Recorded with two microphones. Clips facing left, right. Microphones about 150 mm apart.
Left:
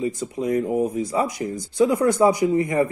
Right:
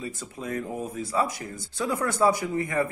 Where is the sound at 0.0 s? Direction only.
20° left (ahead or behind).